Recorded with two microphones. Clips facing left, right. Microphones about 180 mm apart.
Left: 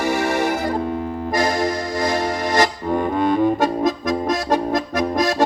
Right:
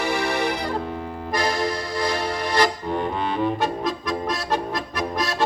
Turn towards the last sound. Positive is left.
turn(degrees=45)  # may be behind; listen again after turning